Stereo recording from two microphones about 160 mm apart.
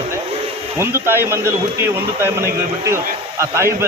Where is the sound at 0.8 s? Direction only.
15° right (ahead or behind).